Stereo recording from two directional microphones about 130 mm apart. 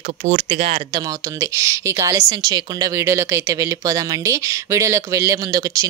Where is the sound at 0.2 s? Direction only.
55° right (ahead or behind).